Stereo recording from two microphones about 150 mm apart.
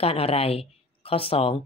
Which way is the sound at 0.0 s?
40° left (ahead or behind).